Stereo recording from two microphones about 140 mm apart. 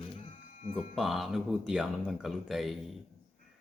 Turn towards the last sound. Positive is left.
turn(degrees=0)  # may be behind; listen again after turning